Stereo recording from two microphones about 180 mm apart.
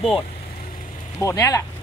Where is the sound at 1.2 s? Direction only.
20° left (ahead or behind).